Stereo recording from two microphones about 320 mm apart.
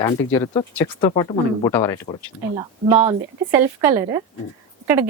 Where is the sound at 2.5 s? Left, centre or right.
Centre.